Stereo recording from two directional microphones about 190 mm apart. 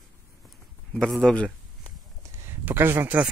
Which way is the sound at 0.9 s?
Centre (ahead or behind).